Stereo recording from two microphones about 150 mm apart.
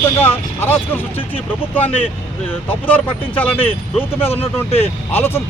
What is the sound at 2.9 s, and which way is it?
Speech, 10° left (ahead or behind).